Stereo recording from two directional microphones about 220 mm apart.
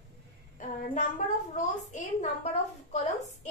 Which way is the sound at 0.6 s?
35° left (ahead or behind).